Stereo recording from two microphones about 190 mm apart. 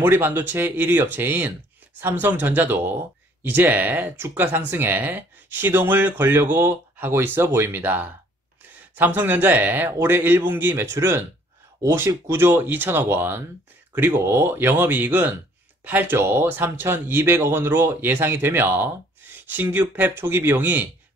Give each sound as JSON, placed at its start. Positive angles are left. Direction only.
{"t": 0.0, "sound": "speech", "side_deg": -10}